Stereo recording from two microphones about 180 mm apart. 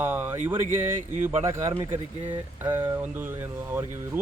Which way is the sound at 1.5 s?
15° right (ahead or behind).